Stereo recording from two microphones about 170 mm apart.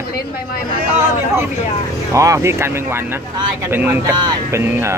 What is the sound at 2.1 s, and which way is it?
A man's voice, 20° right (ahead or behind).